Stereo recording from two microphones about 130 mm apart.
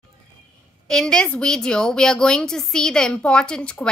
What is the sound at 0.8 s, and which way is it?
Speech, 5° left (ahead or behind).